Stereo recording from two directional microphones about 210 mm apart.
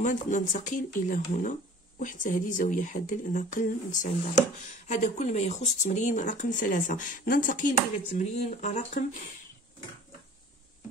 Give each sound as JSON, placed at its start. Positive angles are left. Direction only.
{"t": 0.0, "sound": "speech", "side_deg": 35}